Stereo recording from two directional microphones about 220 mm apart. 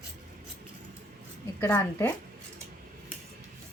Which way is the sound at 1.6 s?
10° left (ahead or behind).